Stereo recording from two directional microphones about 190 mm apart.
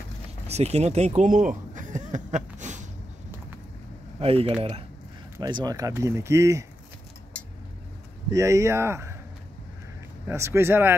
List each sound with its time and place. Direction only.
0.5 s speech: 35° right (ahead or behind)
1.8 s a sound: 40° right (ahead or behind)
4.2 s speech: 30° right (ahead or behind)
5.4 s speech: 20° right (ahead or behind)
8.3 s speech: 15° right (ahead or behind)
10.2 s speech: 15° right (ahead or behind)